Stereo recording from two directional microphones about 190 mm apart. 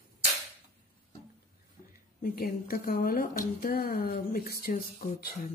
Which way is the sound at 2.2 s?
50° left (ahead or behind).